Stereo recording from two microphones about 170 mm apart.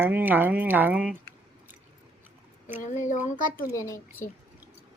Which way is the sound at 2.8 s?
45° left (ahead or behind).